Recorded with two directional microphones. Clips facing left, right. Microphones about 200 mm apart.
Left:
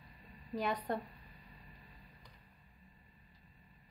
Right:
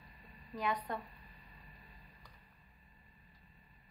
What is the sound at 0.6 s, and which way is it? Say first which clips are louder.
Speech: left 2 dB; 35° left (ahead or behind).